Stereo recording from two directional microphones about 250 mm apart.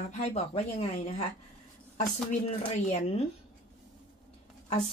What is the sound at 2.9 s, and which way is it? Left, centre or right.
Speech, left.